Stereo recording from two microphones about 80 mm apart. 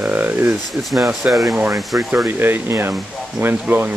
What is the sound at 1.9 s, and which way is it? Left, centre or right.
Speech, right.